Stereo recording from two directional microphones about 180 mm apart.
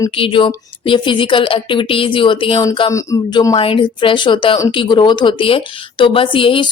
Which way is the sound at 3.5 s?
30° left (ahead or behind).